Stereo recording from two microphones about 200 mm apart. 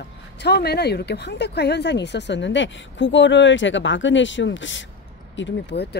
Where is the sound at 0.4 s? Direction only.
55° left (ahead or behind).